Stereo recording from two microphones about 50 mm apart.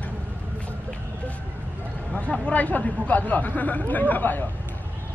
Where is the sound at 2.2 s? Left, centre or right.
Left.